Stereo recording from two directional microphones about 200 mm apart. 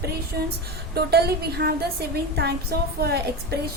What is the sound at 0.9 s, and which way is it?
A woman's voice, 55° right (ahead or behind).